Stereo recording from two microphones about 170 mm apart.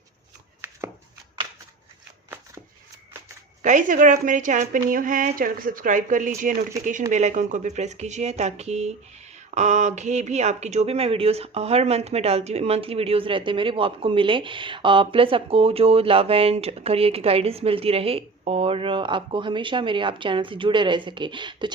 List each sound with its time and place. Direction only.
0.6 s chopping: 10° right (ahead or behind)
3.6 s a woman's voice: 50° right (ahead or behind); by 21.7 s 30° right (ahead or behind)